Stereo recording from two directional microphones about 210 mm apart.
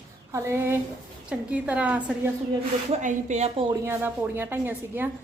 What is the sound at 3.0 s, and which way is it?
Speech, 35° right (ahead or behind).